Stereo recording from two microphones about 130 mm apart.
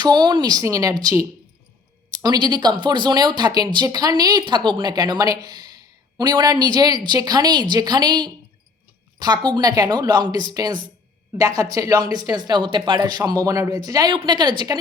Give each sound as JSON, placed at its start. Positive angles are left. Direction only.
{"t": 0.0, "sound": "speech", "side_deg": -35}